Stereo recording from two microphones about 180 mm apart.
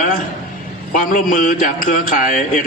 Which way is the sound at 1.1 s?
45° left (ahead or behind).